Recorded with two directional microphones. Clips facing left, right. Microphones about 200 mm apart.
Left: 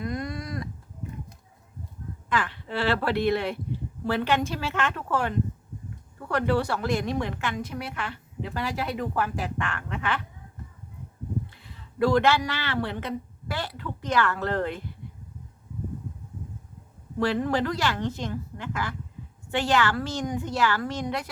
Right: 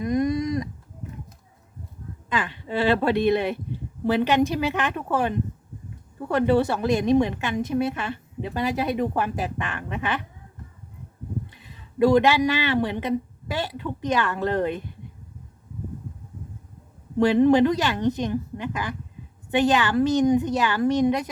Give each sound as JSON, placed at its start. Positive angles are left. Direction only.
{"t": 0.0, "sound": "a sound", "side_deg": -20}
{"t": 2.3, "sound": "a woman's voice", "side_deg": -20}
{"t": 11.5, "sound": "speech", "side_deg": -15}
{"t": 17.2, "sound": "a woman's voice", "side_deg": -20}